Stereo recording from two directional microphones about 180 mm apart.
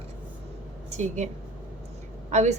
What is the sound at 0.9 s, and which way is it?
Speech, 40° right (ahead or behind).